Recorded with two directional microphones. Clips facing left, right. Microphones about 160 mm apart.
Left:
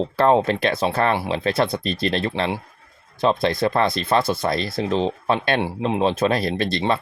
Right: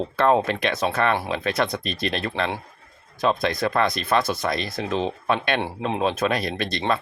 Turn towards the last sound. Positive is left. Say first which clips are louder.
# left 3 dB
turn(degrees=30)  # may be behind; listen again after turning